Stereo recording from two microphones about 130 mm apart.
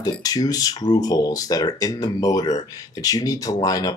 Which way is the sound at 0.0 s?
30° left (ahead or behind).